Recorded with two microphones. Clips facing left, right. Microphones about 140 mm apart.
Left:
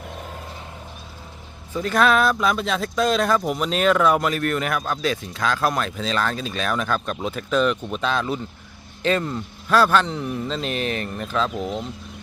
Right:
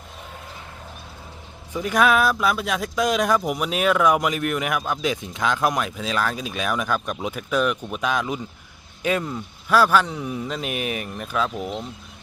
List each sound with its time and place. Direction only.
1.7 s speech: 15° right (ahead or behind)